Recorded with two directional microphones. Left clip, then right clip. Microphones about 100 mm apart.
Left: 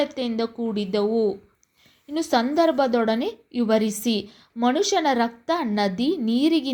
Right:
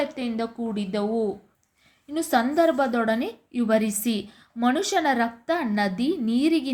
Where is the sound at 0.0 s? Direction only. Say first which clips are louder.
Left 3 dB; 35° left (ahead or behind).